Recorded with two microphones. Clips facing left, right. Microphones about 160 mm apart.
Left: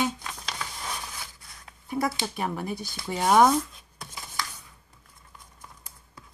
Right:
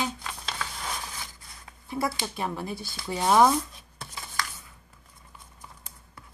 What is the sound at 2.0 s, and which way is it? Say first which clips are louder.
Speech: even; 20° left (ahead or behind).